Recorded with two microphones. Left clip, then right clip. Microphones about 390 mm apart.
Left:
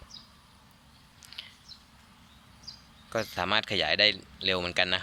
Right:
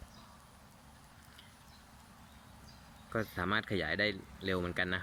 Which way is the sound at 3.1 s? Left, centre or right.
Centre.